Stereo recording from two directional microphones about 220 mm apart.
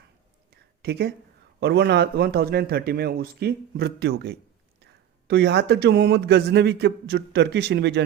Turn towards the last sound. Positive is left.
turn(degrees=-50)  # may be behind; listen again after turning